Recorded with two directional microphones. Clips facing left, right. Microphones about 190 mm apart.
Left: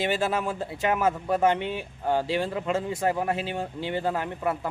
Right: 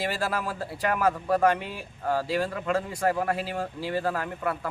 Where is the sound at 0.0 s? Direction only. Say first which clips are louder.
Left 3 dB; 20° left (ahead or behind).